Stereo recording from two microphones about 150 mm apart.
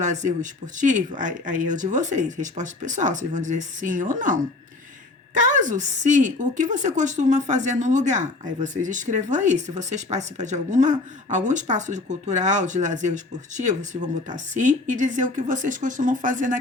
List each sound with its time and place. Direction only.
0.0 s a woman's voice: 55° right (ahead or behind)